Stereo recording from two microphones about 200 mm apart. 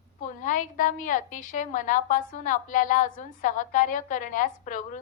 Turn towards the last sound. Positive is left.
turn(degrees=40)  # may be behind; listen again after turning